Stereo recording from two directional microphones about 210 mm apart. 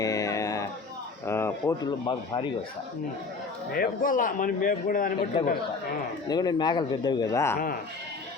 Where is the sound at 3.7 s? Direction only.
45° left (ahead or behind).